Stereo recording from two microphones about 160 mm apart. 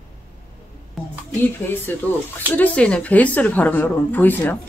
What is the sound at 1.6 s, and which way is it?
Speech, 15° left (ahead or behind).